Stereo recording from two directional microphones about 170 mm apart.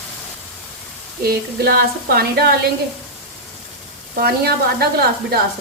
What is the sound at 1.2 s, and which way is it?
Speech, 65° right (ahead or behind).